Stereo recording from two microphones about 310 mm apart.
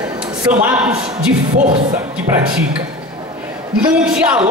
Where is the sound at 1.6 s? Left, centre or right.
Right.